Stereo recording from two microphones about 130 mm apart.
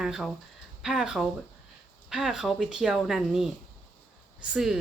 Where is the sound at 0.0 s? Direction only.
5° right (ahead or behind).